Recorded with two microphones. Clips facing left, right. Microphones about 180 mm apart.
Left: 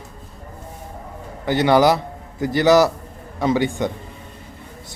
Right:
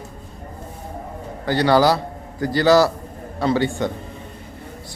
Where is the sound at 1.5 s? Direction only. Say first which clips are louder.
Left 1 dB; 20° left (ahead or behind).